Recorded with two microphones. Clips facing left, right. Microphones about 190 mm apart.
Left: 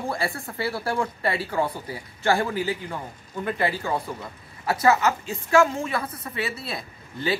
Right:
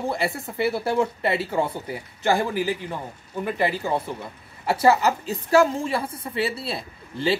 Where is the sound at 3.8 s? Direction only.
25° right (ahead or behind).